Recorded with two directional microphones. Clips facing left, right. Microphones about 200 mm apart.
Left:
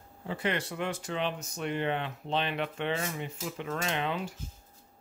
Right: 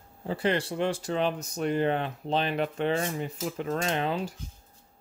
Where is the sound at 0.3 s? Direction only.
35° right (ahead or behind).